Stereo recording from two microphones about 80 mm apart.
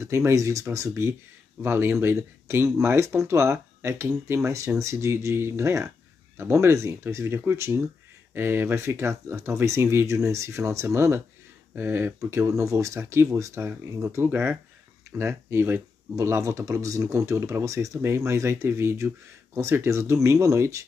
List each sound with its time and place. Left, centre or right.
0.0 s speech: right
12.4 s speech: right
16.2 s speech: right